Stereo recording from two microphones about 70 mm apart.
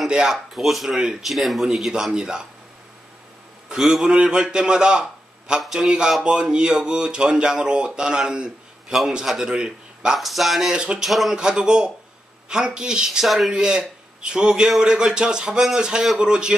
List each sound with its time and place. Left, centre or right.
0.0 s speech: centre
3.6 s a man's voice: centre
11.1 s speech: centre